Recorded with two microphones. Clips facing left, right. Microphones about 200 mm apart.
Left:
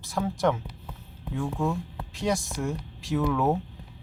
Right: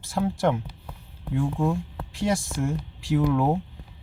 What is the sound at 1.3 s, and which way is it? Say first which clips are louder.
Speech: right 3 dB; 15° right (ahead or behind).